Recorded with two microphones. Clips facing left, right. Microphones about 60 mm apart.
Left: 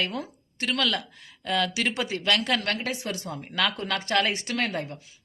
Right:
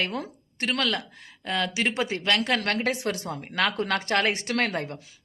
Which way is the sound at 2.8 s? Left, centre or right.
Right.